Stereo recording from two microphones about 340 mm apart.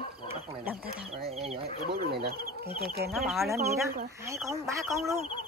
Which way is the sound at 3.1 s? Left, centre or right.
Centre.